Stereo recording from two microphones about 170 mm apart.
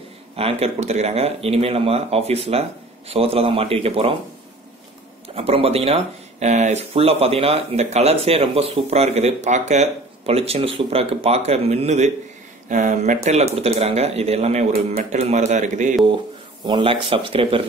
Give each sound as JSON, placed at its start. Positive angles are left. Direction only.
{"t": 0.4, "sound": "speech", "side_deg": -35}
{"t": 5.3, "sound": "a man's voice", "side_deg": -35}
{"t": 16.6, "sound": "speech", "side_deg": -30}